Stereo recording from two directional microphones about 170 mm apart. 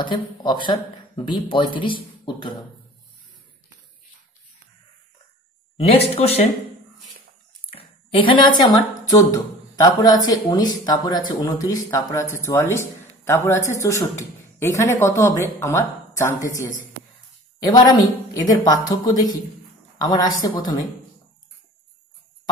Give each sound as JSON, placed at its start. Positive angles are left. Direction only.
{"t": 0.0, "sound": "speech", "side_deg": 25}
{"t": 5.8, "sound": "speech", "side_deg": 35}
{"t": 7.7, "sound": "speech", "side_deg": 30}
{"t": 17.6, "sound": "speech", "side_deg": 25}